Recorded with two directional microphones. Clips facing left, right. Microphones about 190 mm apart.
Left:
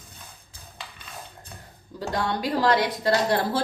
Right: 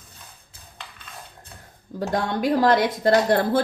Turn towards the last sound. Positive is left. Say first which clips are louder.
# right 4 dB
turn(degrees=-55)  # may be behind; listen again after turning